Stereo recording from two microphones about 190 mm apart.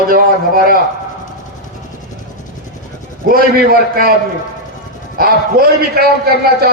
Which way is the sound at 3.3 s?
50° right (ahead or behind).